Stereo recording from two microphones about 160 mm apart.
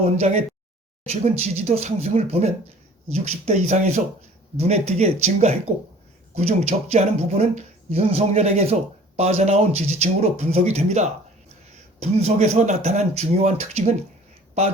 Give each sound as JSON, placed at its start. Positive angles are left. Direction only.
{"t": 0.0, "sound": "speech", "side_deg": -45}